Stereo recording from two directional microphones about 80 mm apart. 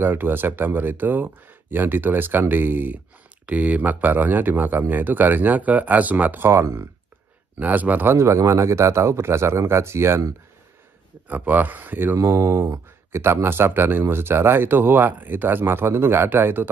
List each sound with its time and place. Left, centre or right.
0.0 s speech: right
7.5 s speech: right
11.2 s speech: right